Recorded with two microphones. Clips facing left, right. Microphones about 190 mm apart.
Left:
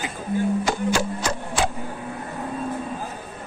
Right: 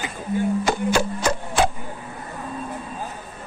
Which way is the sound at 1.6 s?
60° right (ahead or behind).